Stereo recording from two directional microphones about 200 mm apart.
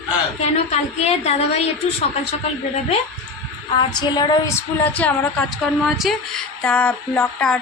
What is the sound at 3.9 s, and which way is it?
Speech, 20° left (ahead or behind).